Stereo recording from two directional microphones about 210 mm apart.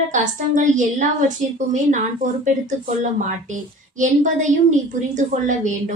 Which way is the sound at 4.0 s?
35° right (ahead or behind).